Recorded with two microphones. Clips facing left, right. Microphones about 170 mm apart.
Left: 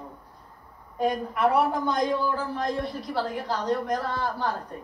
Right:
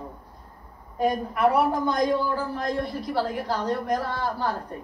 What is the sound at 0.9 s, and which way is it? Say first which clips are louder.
A woman's voice: right 1 dB; 5° right (ahead or behind).